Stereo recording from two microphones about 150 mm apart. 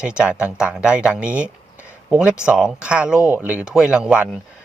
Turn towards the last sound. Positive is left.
turn(degrees=-5)  # may be behind; listen again after turning